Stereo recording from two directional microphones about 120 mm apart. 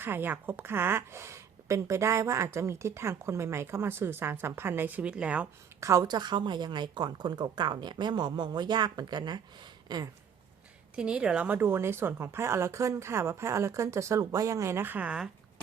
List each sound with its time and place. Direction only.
0.0 s a woman's voice: 20° right (ahead or behind)
5.8 s a woman's voice: 30° right (ahead or behind)
10.9 s a woman's voice: 10° right (ahead or behind)